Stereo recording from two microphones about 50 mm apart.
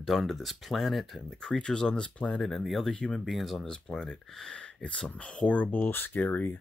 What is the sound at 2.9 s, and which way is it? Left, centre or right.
Speech, centre.